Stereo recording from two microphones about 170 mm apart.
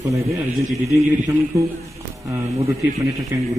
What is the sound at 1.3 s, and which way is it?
A man's voice, 20° right (ahead or behind).